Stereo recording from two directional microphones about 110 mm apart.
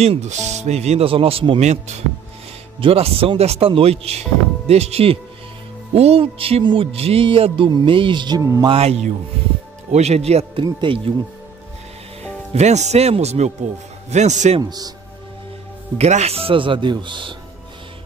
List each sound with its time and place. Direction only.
0.0 s speech: 80° right; by 1.6 s 55° right (ahead or behind)
1.6 s a man's voice: 90° right
2.8 s a man's voice: 60° right (ahead or behind)
6.9 s speech: 65° right (ahead or behind); by 8.4 s 45° right (ahead or behind)
8.4 s speech: 30° right (ahead or behind)
8.6 s speech: 65° right (ahead or behind)
9.8 s speech: 80° right
10.6 s speech: 45° right (ahead or behind)
12.5 s speech: 90° right
14.1 s a man's voice: 90° right
14.6 s speech: 35° right (ahead or behind)
16.0 s speech: 80° right; by 17.4 s 45° right (ahead or behind)